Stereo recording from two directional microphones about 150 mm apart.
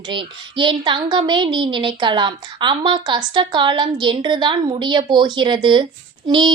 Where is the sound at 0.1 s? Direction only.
35° right (ahead or behind).